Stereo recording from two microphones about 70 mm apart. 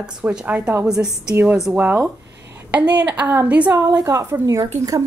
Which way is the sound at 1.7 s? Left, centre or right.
Right.